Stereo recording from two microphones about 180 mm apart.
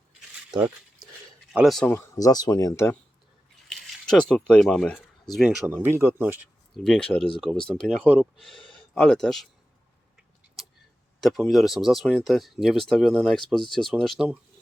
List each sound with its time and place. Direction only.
1.5 s speech: centre (ahead or behind)
1.9 s speech: 15° left (ahead or behind)
3.7 s speech: 5° left (ahead or behind)
6.7 s speech: 5° left (ahead or behind)
11.2 s speech: centre (ahead or behind)